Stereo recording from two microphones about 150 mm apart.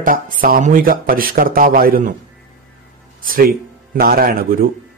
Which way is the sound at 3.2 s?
75° right (ahead or behind).